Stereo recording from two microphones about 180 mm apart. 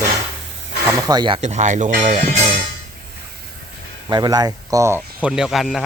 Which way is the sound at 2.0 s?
35° right (ahead or behind).